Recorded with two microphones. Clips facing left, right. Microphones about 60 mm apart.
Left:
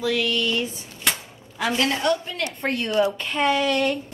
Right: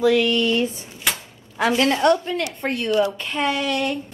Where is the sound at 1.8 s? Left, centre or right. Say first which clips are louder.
Right 5 dB; right.